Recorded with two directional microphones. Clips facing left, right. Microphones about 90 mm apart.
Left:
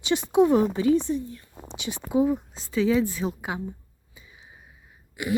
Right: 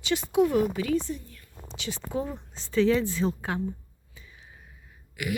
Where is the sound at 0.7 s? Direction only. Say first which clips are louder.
Left 6 dB; 25° left (ahead or behind).